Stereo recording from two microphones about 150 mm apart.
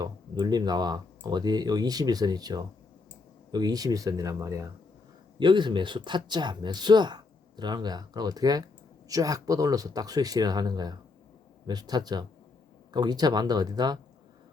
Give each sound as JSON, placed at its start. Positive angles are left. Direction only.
{"t": 0.0, "sound": "speech", "side_deg": -25}
{"t": 5.4, "sound": "speech", "side_deg": -30}